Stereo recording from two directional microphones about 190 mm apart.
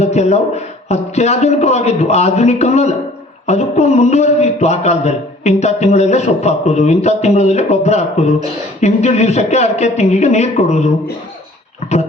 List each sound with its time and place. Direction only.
0.0 s a man's voice: 35° left (ahead or behind)